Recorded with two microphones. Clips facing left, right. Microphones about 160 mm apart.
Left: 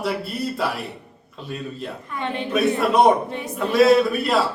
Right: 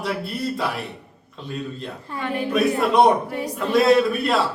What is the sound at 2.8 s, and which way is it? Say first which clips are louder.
A man's voice: even; centre (ahead or behind).